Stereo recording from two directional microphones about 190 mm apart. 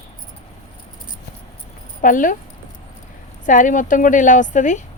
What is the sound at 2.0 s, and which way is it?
Speech, 45° left (ahead or behind).